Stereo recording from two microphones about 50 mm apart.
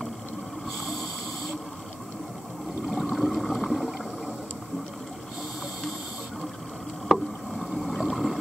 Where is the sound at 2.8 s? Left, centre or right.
Centre.